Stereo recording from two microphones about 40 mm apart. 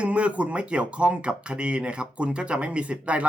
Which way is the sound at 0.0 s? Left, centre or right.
Right.